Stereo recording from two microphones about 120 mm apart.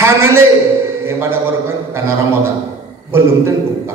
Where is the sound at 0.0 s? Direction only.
20° right (ahead or behind).